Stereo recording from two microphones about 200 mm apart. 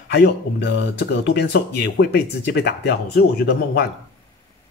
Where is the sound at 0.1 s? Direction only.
55° left (ahead or behind).